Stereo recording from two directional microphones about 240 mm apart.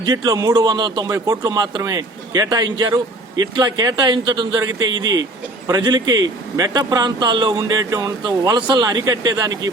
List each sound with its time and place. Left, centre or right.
0.0 s a man's voice: centre